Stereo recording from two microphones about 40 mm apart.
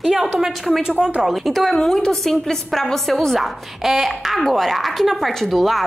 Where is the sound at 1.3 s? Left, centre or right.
Centre.